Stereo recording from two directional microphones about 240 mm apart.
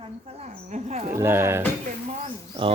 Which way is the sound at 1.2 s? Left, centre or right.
Centre.